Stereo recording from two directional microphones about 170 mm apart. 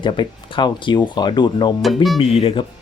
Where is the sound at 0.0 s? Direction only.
30° left (ahead or behind).